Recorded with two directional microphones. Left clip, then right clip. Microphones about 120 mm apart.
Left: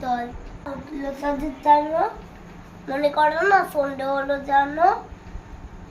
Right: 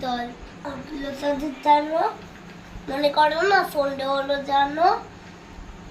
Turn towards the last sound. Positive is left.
turn(degrees=15)  # may be behind; listen again after turning